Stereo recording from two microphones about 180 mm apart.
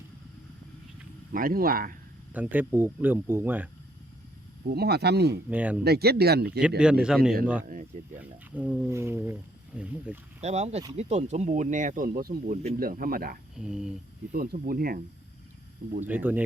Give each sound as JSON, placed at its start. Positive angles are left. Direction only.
{"t": 1.3, "sound": "speech", "side_deg": -50}
{"t": 2.3, "sound": "speech", "side_deg": -10}
{"t": 4.6, "sound": "speech", "side_deg": -60}
{"t": 5.5, "sound": "speech", "side_deg": -10}
{"t": 5.8, "sound": "speech", "side_deg": -60}
{"t": 6.6, "sound": "a man's voice", "side_deg": -5}
{"t": 7.7, "sound": "speech", "side_deg": -45}
{"t": 8.2, "sound": "speech", "side_deg": -10}
{"t": 10.4, "sound": "speech", "side_deg": -40}
{"t": 13.6, "sound": "a man's voice", "side_deg": -5}
{"t": 14.3, "sound": "speech", "side_deg": -55}
{"t": 16.0, "sound": "speech", "side_deg": -10}